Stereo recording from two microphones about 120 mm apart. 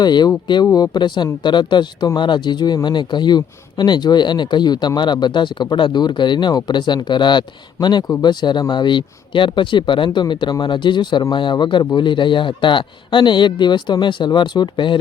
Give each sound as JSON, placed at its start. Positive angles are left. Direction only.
{"t": 0.0, "sound": "speech", "side_deg": 40}